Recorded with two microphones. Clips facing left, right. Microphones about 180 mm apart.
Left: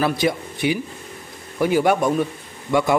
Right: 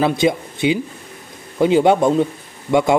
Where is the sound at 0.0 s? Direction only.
20° right (ahead or behind).